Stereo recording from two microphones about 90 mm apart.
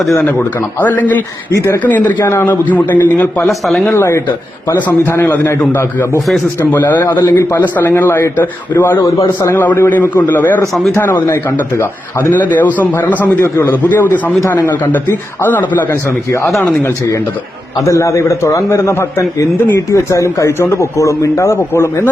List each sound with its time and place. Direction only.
0.3 s a man's voice: 20° left (ahead or behind)
1.5 s a man's voice: 30° left (ahead or behind)
1.8 s a man's voice: 20° left (ahead or behind)
3.4 s speech: centre (ahead or behind)
3.9 s a man's voice: 30° left (ahead or behind)
9.0 s a man's voice: 35° left (ahead or behind)
16.5 s speech: centre (ahead or behind)
17.7 s a man's voice: 35° left (ahead or behind)